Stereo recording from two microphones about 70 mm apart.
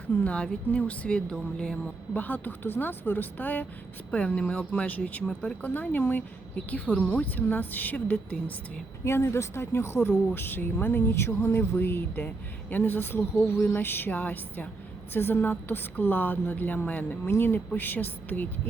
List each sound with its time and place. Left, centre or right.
0.3 s speech: centre
5.7 s speech: left
9.0 s speech: left